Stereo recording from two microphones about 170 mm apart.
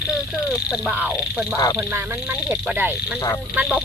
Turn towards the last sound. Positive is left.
turn(degrees=-5)  # may be behind; listen again after turning